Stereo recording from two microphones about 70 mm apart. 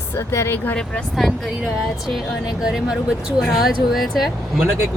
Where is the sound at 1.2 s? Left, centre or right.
Centre.